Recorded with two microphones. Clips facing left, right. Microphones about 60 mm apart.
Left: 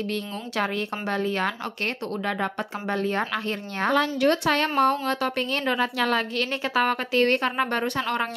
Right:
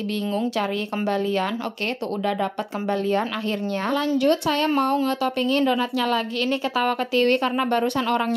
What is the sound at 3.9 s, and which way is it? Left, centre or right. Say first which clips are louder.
Speech: right 2 dB; left.